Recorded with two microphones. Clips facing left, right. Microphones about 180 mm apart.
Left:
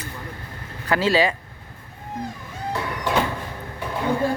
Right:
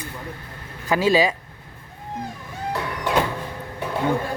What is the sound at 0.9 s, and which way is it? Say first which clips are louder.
Speech: right 1 dB; 10° right (ahead or behind).